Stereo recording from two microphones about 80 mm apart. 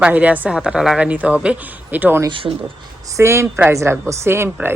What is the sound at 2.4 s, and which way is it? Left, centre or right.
Speech, right.